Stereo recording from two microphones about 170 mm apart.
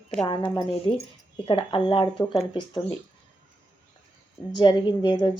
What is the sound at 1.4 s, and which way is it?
Speech, 30° left (ahead or behind).